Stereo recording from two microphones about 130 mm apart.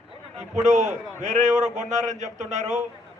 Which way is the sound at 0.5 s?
70° right (ahead or behind).